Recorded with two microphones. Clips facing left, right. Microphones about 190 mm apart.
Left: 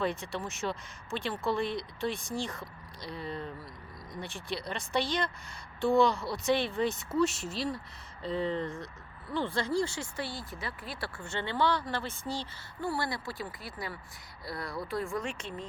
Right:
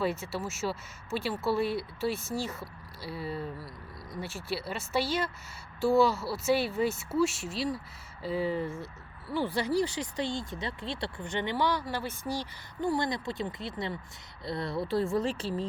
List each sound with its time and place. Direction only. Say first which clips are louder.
0.0 s speech: right 2 dB; 5° right (ahead or behind); by 15.6 s 30° right (ahead or behind)